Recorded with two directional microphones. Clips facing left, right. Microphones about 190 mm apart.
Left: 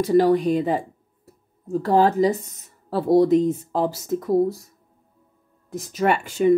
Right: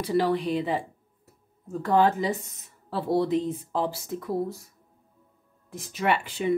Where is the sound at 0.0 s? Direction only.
45° left (ahead or behind).